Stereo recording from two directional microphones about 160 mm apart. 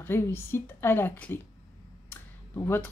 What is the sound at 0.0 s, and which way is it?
A woman's voice, 15° left (ahead or behind).